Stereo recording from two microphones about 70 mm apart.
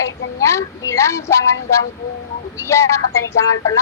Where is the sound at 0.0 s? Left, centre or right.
Left.